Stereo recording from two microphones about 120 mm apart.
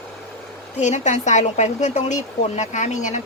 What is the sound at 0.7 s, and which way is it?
Speech, 75° left (ahead or behind).